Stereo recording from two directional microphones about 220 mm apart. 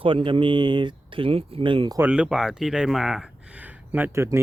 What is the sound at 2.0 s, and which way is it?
Speech, 5° right (ahead or behind).